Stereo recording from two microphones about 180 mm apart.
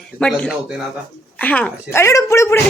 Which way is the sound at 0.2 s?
5° left (ahead or behind).